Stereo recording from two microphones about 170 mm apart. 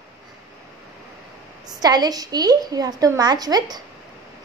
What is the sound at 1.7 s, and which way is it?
A woman's voice, 25° right (ahead or behind).